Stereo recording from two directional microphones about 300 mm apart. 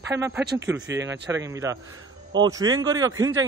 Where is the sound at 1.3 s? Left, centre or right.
Centre.